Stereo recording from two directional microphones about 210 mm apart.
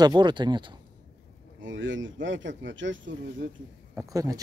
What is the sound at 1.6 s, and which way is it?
Speech, 65° right (ahead or behind).